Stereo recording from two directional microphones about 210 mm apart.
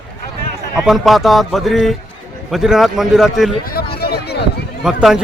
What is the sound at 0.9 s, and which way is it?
Speech, centre (ahead or behind).